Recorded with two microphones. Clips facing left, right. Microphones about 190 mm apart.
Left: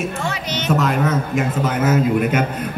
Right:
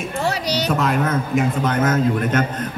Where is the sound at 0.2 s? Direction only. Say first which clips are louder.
Right 3 dB; 35° right (ahead or behind).